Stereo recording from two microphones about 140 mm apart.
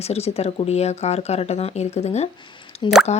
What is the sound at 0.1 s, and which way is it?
Speech, 50° left (ahead or behind).